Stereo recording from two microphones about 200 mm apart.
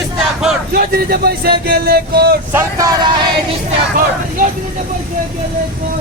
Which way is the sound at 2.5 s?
15° right (ahead or behind).